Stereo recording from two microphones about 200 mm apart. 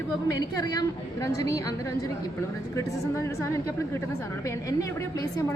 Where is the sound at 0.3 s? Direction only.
20° left (ahead or behind).